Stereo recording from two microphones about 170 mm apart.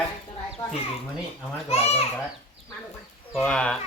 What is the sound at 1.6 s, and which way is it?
Speech, 35° left (ahead or behind).